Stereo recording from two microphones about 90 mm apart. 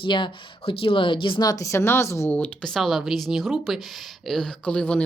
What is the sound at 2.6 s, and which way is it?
A woman's voice, centre (ahead or behind).